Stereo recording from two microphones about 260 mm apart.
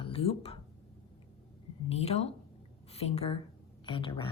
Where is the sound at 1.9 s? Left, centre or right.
Left.